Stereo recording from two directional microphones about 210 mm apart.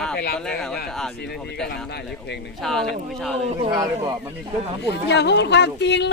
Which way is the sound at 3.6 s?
20° right (ahead or behind).